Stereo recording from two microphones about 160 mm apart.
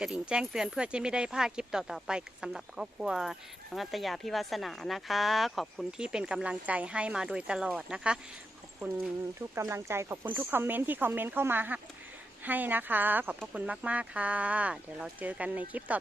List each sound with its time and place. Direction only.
0.0 s speech: 5° right (ahead or behind)
9.6 s speech: 15° right (ahead or behind)